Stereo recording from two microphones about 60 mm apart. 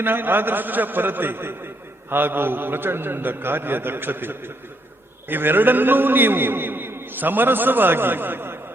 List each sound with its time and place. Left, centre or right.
0.0 s a man's voice: right